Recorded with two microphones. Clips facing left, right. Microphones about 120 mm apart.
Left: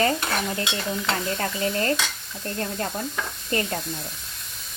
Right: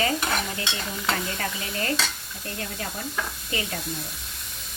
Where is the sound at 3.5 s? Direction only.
45° left (ahead or behind).